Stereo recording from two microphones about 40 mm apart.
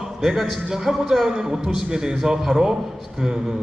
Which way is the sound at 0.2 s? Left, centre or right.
Centre.